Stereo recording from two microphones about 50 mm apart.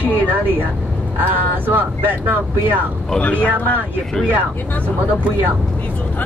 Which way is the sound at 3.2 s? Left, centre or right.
Left.